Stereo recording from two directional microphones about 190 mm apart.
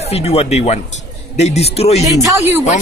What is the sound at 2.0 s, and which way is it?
Speech, 15° right (ahead or behind).